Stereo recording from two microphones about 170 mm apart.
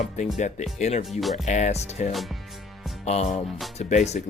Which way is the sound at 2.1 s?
Centre (ahead or behind).